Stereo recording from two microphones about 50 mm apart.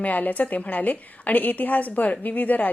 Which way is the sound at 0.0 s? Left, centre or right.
Left.